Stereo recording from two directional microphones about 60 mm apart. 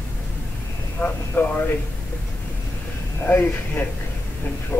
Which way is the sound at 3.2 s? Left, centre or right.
Left.